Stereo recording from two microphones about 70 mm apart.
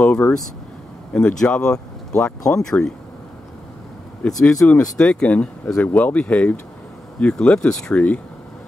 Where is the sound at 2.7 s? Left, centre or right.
Left.